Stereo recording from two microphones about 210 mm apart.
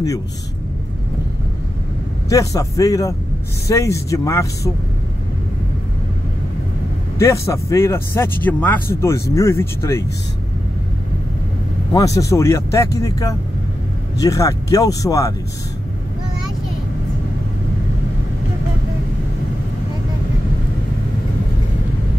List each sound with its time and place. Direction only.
2.2 s a man's voice: 15° left (ahead or behind)
7.2 s a man's voice: 15° left (ahead or behind)
11.9 s a man's voice: 15° left (ahead or behind)